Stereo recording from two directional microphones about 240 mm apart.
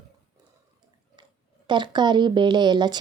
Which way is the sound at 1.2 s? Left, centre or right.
Centre.